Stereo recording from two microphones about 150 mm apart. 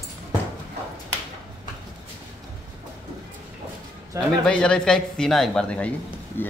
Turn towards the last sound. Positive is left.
turn(degrees=10)  # may be behind; listen again after turning